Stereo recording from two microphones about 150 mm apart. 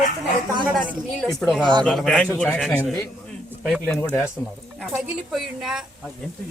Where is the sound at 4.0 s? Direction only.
15° left (ahead or behind).